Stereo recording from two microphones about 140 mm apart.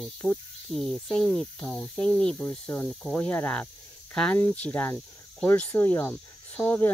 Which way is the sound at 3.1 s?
15° left (ahead or behind).